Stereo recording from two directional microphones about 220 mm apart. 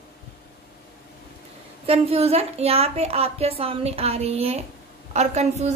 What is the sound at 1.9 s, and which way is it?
A woman's voice, 25° right (ahead or behind).